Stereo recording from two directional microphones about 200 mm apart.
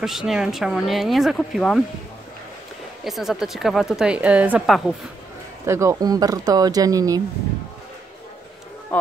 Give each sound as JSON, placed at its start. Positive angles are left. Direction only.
{"t": 0.0, "sound": "a woman's voice", "side_deg": 0}
{"t": 3.0, "sound": "a woman's voice", "side_deg": 0}
{"t": 5.7, "sound": "speech", "side_deg": -15}